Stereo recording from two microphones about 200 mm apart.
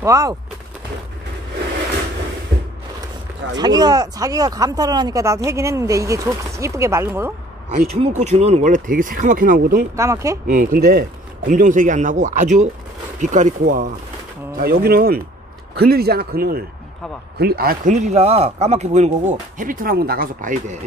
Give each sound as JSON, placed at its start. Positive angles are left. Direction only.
{"t": 0.0, "sound": "speech", "side_deg": -15}
{"t": 3.5, "sound": "speech", "side_deg": -20}
{"t": 7.7, "sound": "speech", "side_deg": -35}
{"t": 9.9, "sound": "speech", "side_deg": -15}
{"t": 10.4, "sound": "speech", "side_deg": -45}
{"t": 14.6, "sound": "a man's voice", "side_deg": -50}